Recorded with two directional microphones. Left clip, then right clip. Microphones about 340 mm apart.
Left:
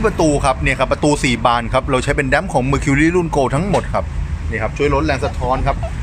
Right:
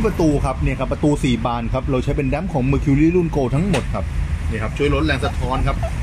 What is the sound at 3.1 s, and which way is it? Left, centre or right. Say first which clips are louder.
Speech: left 4 dB; left.